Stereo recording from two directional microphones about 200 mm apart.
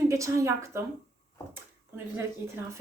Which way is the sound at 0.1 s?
15° right (ahead or behind).